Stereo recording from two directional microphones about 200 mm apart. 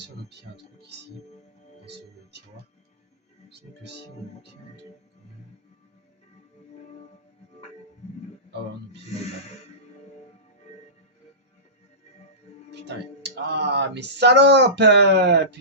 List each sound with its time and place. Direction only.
0.0 s speech: 55° right (ahead or behind)
1.8 s music: 60° right (ahead or behind)
12.7 s music: 60° right (ahead or behind)